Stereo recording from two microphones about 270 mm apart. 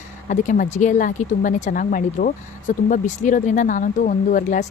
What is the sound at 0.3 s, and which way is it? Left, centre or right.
Speech, left.